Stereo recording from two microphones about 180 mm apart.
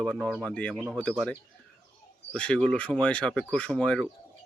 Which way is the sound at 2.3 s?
5° left (ahead or behind).